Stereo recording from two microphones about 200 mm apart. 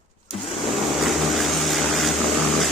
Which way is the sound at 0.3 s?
Centre (ahead or behind).